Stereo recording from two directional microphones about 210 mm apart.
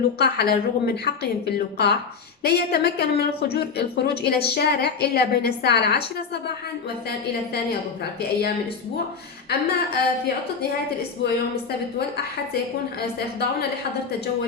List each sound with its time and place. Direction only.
0.2 s a woman's voice: 50° left (ahead or behind)
8.2 s a woman's voice: 50° left (ahead or behind)
13.0 s a woman's voice: 50° left (ahead or behind)